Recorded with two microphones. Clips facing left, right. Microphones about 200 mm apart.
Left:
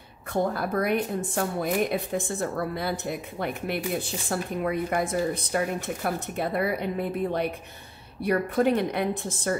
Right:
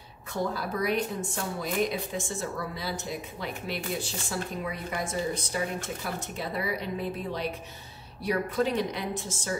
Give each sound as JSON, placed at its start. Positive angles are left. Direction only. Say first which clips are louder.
{"t": 0.3, "sound": "a woman's voice", "louder": "left 5 dB", "side_deg": 55}